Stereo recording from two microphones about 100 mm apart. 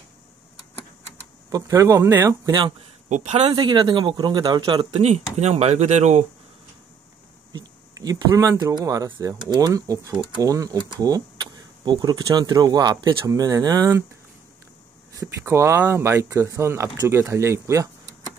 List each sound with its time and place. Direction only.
1.5 s speech: 35° right (ahead or behind)
3.5 s speech: 50° right (ahead or behind)
4.9 s speech: 90° right
7.5 s speech: 40° right (ahead or behind)
15.1 s speech: 35° right (ahead or behind)